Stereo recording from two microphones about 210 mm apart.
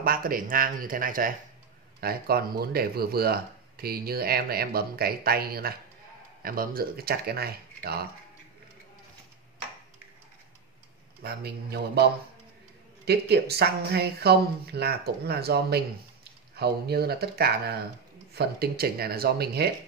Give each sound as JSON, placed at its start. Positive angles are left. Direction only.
{"t": 0.0, "sound": "speech", "side_deg": -45}
{"t": 11.2, "sound": "speech", "side_deg": -50}